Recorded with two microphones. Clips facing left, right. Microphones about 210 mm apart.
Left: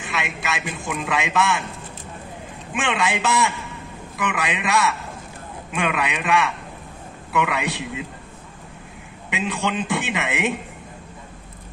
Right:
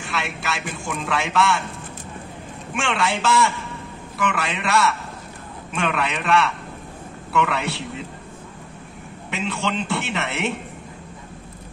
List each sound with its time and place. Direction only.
0.0 s a man's voice: 20° left (ahead or behind)
2.7 s a man's voice: 20° left (ahead or behind)
9.3 s a man's voice: 15° left (ahead or behind)